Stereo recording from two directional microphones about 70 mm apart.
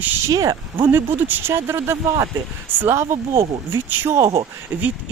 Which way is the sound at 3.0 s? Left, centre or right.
Right.